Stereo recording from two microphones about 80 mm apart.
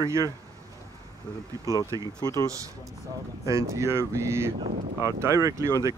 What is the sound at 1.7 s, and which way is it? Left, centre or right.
Speech, right.